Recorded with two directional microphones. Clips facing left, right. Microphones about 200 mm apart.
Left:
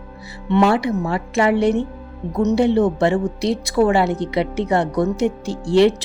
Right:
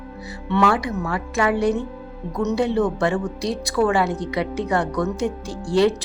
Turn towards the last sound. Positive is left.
turn(degrees=25)  # may be behind; listen again after turning